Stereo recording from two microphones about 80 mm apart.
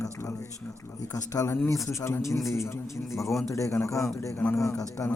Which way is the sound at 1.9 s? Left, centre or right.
Left.